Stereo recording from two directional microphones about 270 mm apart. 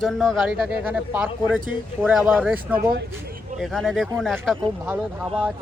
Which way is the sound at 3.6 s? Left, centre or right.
Centre.